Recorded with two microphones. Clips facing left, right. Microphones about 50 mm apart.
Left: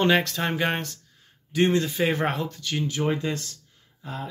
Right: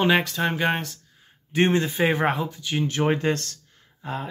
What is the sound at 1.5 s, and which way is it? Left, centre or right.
Speech, right.